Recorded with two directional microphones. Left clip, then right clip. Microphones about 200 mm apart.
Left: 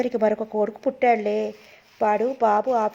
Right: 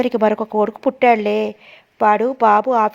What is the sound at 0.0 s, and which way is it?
Speech, 40° right (ahead or behind).